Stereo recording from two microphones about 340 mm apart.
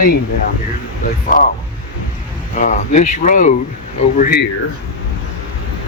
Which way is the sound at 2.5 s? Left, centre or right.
Left.